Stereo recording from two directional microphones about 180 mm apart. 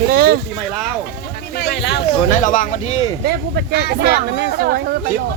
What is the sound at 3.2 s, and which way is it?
Speech, 65° right (ahead or behind).